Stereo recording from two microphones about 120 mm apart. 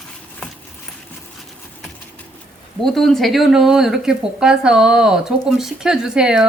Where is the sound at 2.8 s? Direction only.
5° left (ahead or behind).